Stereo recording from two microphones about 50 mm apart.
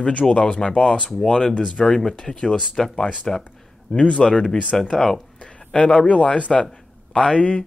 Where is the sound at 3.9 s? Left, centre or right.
Left.